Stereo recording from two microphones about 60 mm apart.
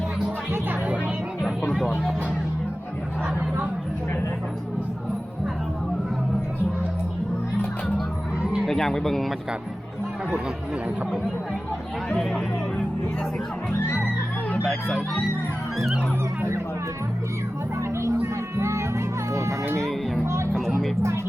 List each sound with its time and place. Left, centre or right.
0.5 s music: right
1.7 s music: centre
8.6 s speech: centre
17.7 s music: right
20.5 s music: centre